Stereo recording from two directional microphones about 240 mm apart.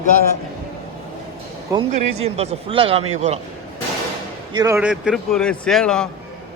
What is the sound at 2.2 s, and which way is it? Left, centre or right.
A man's voice, right.